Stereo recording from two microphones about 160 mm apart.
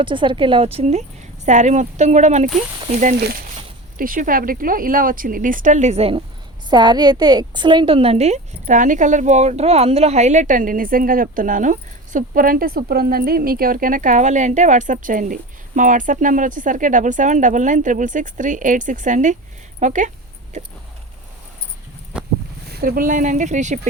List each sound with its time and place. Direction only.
0.0 s a woman's voice: 30° right (ahead or behind)
3.2 s speech: 90° right
3.9 s a woman's voice: 60° right (ahead or behind); by 20.7 s 45° right (ahead or behind)
22.1 s boat: 5° right (ahead or behind)
22.7 s a woman's voice: 70° right (ahead or behind); by 23.8 s 50° right (ahead or behind)